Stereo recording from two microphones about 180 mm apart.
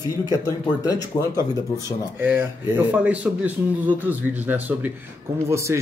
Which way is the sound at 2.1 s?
10° right (ahead or behind).